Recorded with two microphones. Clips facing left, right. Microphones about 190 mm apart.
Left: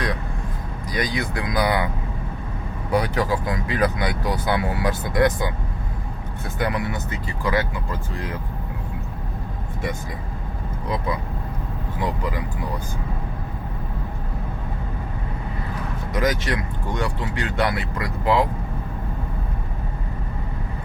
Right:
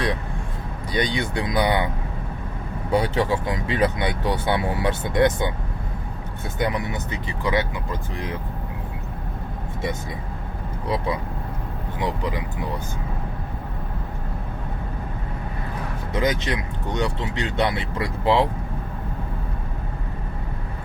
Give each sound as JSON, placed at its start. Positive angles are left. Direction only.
{"t": 0.9, "sound": "speech", "side_deg": -25}
{"t": 2.9, "sound": "speech", "side_deg": -25}
{"t": 6.6, "sound": "speech", "side_deg": -20}
{"t": 11.9, "sound": "speech", "side_deg": -20}
{"t": 16.1, "sound": "speech", "side_deg": -20}